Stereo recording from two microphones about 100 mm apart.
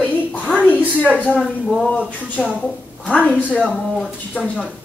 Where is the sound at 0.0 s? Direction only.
15° left (ahead or behind).